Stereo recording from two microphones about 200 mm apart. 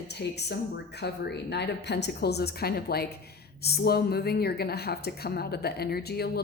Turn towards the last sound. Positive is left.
turn(degrees=50)  # may be behind; listen again after turning